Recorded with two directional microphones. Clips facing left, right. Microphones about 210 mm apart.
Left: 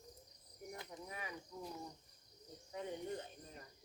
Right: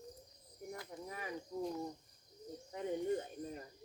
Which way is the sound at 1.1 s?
40° right (ahead or behind).